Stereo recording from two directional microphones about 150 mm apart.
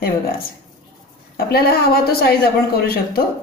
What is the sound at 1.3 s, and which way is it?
A woman's voice, 90° left.